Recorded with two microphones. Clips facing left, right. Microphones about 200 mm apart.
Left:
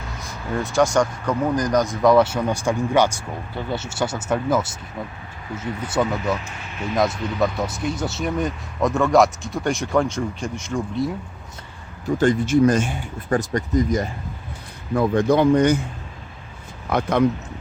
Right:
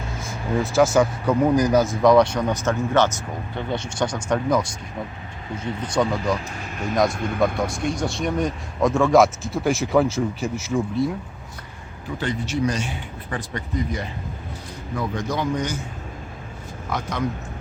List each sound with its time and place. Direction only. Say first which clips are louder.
0.2 s speech: right 2 dB; centre (ahead or behind)
5.8 s speech: even; 5° left (ahead or behind)
7.3 s speech: right 1 dB; centre (ahead or behind)
12.0 s speech: left 8 dB; 45° left (ahead or behind)
14.9 s speech: left 9 dB; 55° left (ahead or behind)
16.9 s speech: left 8 dB; 55° left (ahead or behind)